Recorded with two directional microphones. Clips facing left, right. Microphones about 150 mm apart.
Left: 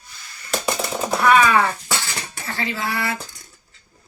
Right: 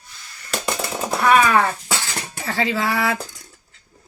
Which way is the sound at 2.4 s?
90° right.